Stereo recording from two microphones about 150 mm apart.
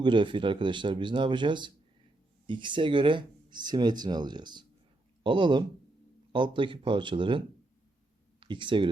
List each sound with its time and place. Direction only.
0.0 s speech: 30° right (ahead or behind)